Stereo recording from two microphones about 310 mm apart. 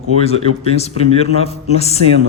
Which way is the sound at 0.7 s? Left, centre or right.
Centre.